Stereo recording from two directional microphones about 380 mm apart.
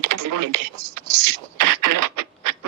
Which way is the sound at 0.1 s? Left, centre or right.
Right.